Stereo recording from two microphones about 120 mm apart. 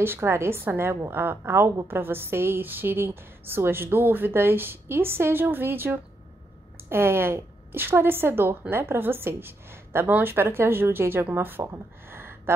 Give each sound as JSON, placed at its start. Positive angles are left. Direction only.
{"t": 0.0, "sound": "a woman's voice", "side_deg": -20}